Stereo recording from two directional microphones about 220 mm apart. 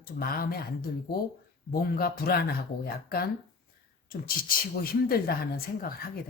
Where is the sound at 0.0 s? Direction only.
40° left (ahead or behind).